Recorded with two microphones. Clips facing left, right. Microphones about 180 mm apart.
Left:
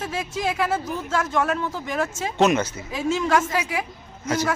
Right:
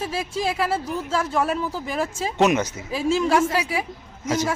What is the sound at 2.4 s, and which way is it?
Speech, 15° right (ahead or behind).